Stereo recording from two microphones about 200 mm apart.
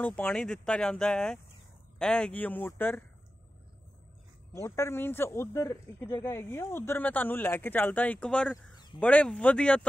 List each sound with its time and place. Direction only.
0.0 s speech: 5° left (ahead or behind)
4.6 s speech: 15° left (ahead or behind)
8.7 s a sound: 20° left (ahead or behind)
9.0 s speech: 5° left (ahead or behind)